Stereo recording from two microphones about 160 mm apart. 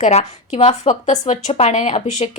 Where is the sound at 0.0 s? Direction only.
45° left (ahead or behind).